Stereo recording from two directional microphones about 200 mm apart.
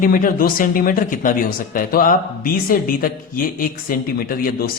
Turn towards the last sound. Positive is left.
turn(degrees=45)  # may be behind; listen again after turning